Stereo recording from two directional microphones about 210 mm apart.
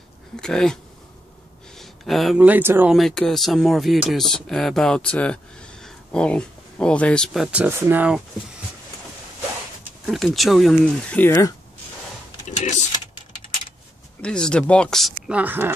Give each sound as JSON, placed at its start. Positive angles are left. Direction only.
{"t": 0.4, "sound": "speech", "side_deg": 5}
{"t": 1.8, "sound": "speech", "side_deg": 0}
{"t": 10.0, "sound": "speech", "side_deg": 0}
{"t": 12.4, "sound": "a sound", "side_deg": 35}
{"t": 14.2, "sound": "speech", "side_deg": 5}